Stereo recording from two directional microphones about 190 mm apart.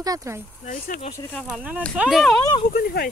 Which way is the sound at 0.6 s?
45° left (ahead or behind).